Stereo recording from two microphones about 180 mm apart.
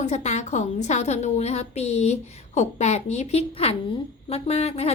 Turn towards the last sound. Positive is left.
turn(degrees=35)  # may be behind; listen again after turning